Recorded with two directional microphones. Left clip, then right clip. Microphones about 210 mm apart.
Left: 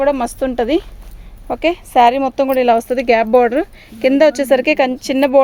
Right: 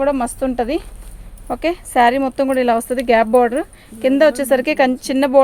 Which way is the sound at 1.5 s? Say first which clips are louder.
Left 3 dB; 25° left (ahead or behind).